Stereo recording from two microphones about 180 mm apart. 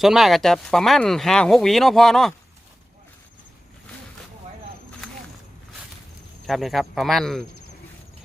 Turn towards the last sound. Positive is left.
turn(degrees=0)  # may be behind; listen again after turning